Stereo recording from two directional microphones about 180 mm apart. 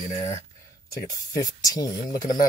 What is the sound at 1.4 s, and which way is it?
Speech, 20° left (ahead or behind).